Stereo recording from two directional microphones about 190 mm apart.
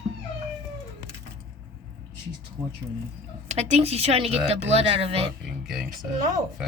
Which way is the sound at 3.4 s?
35° right (ahead or behind).